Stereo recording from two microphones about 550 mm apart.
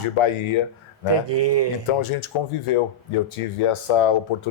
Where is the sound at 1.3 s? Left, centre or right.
Right.